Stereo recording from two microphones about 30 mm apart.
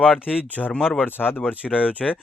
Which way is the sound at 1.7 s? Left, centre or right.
Left.